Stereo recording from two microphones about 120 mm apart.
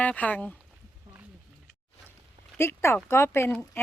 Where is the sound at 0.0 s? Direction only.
10° left (ahead or behind).